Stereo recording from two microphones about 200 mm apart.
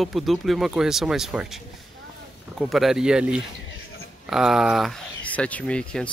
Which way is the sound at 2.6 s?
Centre (ahead or behind).